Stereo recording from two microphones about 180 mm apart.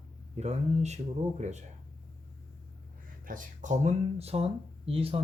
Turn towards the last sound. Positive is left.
turn(degrees=-30)  # may be behind; listen again after turning